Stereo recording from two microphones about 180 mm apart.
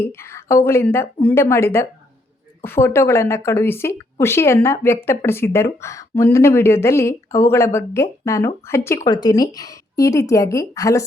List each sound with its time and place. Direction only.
0.1 s a woman's voice: 15° left (ahead or behind)